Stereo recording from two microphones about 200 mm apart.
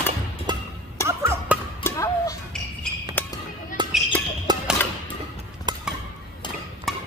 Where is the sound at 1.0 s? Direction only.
10° right (ahead or behind).